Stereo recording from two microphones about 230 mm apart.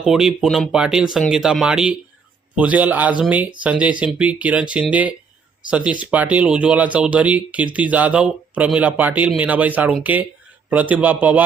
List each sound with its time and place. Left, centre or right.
0.0 s speech: centre